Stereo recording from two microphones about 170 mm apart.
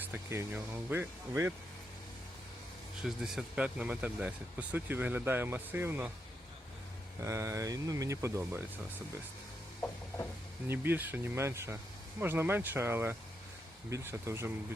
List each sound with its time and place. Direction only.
0.1 s speech: 10° right (ahead or behind)
3.0 s speech: centre (ahead or behind)
7.3 s speech: 15° right (ahead or behind)
10.7 s speech: 10° right (ahead or behind)